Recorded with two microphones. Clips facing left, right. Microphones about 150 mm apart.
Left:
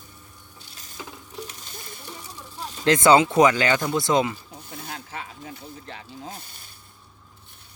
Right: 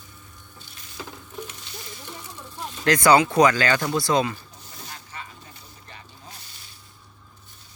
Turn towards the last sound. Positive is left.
turn(degrees=50)  # may be behind; listen again after turning